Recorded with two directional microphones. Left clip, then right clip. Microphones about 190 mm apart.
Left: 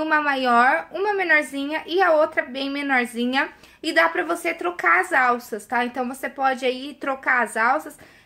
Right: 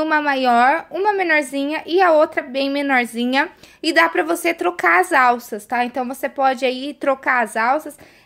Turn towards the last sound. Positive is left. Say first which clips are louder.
# right 2 dB
turn(degrees=-40)  # may be behind; listen again after turning